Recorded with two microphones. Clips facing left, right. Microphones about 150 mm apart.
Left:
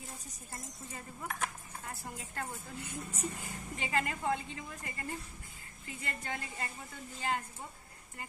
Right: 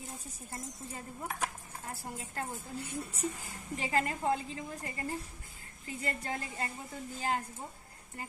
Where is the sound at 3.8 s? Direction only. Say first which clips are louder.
Right 2 dB; 35° right (ahead or behind).